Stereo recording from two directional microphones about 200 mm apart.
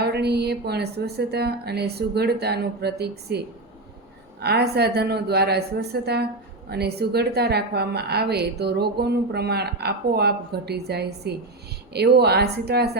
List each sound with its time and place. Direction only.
0.0 s a woman's voice: 55° right (ahead or behind)